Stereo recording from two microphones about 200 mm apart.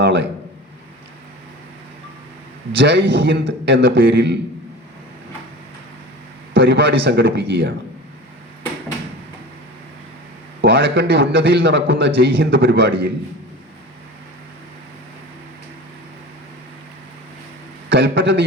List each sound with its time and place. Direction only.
0.0 s a sound: 60° right (ahead or behind)
2.7 s a man's voice: 60° right (ahead or behind)
6.5 s a man's voice: 65° right (ahead or behind)
10.6 s a man's voice: 60° right (ahead or behind)
17.8 s a man's voice: 60° right (ahead or behind)